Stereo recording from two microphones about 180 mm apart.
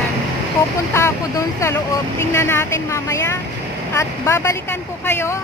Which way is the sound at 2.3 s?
15° left (ahead or behind).